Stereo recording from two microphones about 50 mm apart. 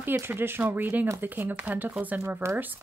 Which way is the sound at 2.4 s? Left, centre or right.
Right.